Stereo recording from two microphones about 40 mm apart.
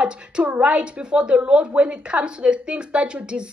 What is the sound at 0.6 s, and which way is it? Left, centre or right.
A woman's voice, right.